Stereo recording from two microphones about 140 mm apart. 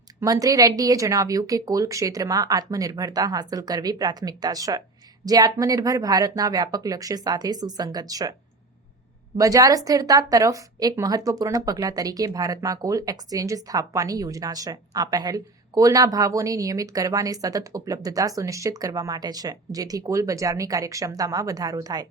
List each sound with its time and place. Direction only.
0.2 s a woman's voice: 25° right (ahead or behind)
9.4 s a woman's voice: 25° right (ahead or behind)